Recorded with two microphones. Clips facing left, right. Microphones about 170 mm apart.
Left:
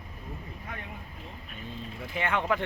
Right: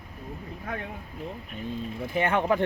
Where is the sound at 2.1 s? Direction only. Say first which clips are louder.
Right 5 dB; 40° right (ahead or behind).